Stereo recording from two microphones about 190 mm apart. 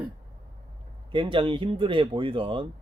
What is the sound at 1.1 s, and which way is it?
Speech, 25° right (ahead or behind).